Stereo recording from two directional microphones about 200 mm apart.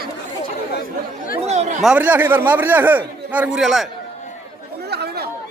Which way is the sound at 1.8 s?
5° right (ahead or behind).